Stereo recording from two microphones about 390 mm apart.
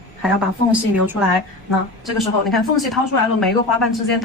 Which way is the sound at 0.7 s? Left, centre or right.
Centre.